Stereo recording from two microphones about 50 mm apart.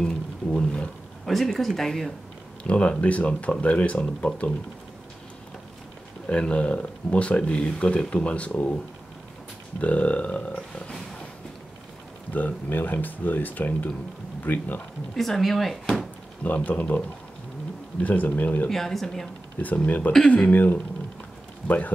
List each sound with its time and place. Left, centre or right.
0.0 s speech: centre
1.2 s speech: centre
2.6 s speech: left
6.2 s speech: left
9.8 s speech: left
12.3 s speech: left
15.1 s speech: centre
16.4 s speech: left
18.0 s speech: left
18.7 s speech: centre
19.6 s speech: left